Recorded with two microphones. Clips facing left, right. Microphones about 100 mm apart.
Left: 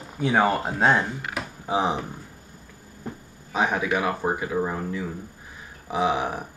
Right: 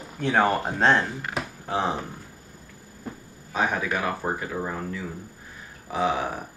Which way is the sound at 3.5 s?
20° left (ahead or behind).